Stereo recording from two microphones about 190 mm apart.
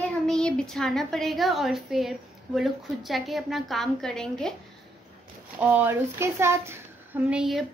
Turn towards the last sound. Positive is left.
turn(degrees=0)  # may be behind; listen again after turning